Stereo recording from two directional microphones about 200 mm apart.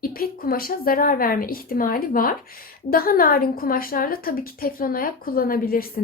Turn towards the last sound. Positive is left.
turn(degrees=50)  # may be behind; listen again after turning